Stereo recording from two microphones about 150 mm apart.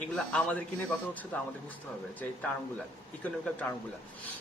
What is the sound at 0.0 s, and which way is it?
A man's voice, 5° left (ahead or behind).